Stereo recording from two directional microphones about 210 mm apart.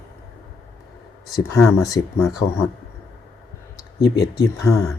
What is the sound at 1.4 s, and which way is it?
Speech, 15° left (ahead or behind).